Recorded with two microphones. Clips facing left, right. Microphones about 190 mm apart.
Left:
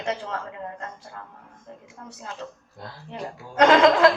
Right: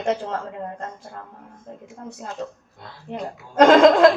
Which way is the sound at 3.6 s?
45° right (ahead or behind).